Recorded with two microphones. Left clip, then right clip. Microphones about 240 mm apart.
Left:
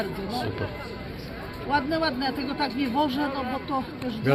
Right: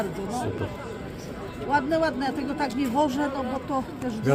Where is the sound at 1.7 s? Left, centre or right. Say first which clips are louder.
Right 2 dB; centre.